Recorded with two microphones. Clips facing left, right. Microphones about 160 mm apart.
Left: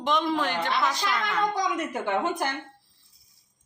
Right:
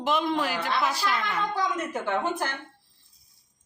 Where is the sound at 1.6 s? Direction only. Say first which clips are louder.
Left 1 dB; 15° left (ahead or behind).